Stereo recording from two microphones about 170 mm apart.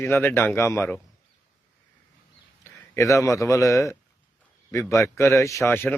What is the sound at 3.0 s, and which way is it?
A man's voice, 20° left (ahead or behind).